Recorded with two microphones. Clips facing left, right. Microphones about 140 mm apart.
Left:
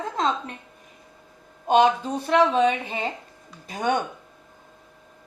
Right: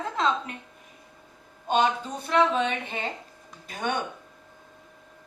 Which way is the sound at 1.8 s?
35° left (ahead or behind).